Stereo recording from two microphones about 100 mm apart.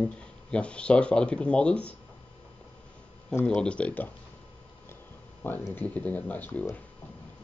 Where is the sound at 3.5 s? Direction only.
10° left (ahead or behind).